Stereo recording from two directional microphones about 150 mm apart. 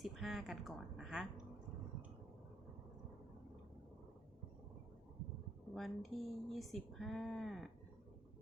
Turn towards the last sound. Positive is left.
turn(degrees=0)  # may be behind; listen again after turning